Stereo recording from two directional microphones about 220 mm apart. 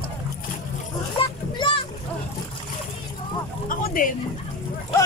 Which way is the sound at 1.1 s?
20° left (ahead or behind).